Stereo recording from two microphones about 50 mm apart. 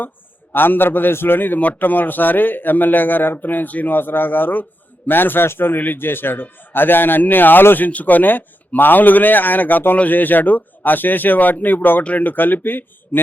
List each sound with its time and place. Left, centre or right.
0.5 s a man's voice: left
7.9 s a man's voice: left